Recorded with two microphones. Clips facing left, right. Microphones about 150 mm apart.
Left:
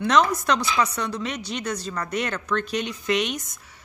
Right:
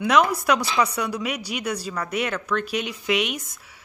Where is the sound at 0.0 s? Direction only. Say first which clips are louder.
Right 1 dB; 10° right (ahead or behind).